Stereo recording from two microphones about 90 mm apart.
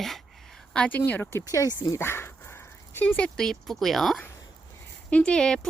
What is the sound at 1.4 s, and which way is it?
Speech, 40° left (ahead or behind).